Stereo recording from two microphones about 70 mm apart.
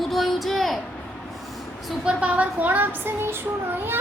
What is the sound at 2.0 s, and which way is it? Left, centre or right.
Speech, centre.